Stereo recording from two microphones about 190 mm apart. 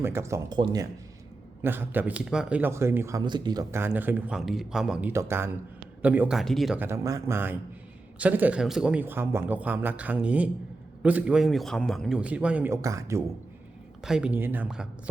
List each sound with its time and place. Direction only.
0.0 s speech: 15° right (ahead or behind)
1.6 s a man's voice: 10° right (ahead or behind)
6.7 s a man's voice: 15° right (ahead or behind)
14.0 s a man's voice: 5° right (ahead or behind)